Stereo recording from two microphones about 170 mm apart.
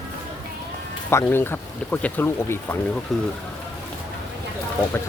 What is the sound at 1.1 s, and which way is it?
Speech, 15° left (ahead or behind).